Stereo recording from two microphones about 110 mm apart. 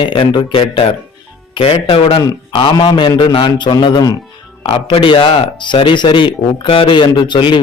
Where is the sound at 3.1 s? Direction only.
55° left (ahead or behind).